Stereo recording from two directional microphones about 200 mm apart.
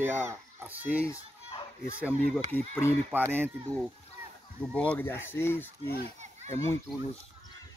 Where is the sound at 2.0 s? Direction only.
5° right (ahead or behind).